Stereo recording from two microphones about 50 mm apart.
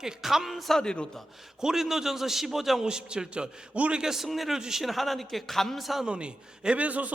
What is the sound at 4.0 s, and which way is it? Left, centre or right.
A man's voice, centre.